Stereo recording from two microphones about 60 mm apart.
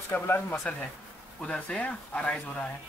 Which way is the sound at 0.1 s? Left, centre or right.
Left.